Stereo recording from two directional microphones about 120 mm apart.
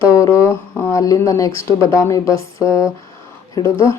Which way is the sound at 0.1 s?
25° left (ahead or behind).